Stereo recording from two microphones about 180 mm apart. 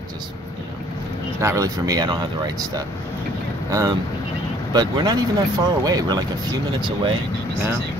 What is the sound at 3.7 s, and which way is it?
Speech, 20° right (ahead or behind).